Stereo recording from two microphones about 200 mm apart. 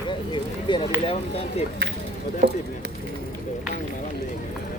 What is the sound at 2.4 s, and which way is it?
Speech, 55° right (ahead or behind).